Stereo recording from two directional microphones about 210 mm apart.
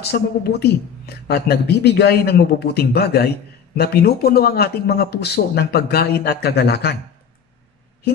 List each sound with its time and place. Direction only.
0.0 s a woman's voice: 50° left (ahead or behind)